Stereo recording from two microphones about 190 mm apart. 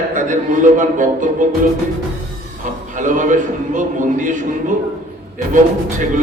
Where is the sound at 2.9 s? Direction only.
40° right (ahead or behind).